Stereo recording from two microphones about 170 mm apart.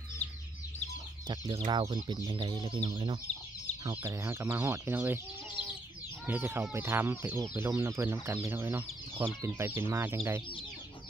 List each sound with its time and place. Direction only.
1.2 s speech: 20° right (ahead or behind)
3.8 s speech: 15° right (ahead or behind)